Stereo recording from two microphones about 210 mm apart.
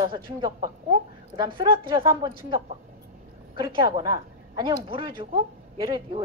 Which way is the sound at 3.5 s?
25° right (ahead or behind).